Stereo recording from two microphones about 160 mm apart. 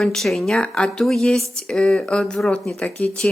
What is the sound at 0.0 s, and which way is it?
Speech, centre (ahead or behind).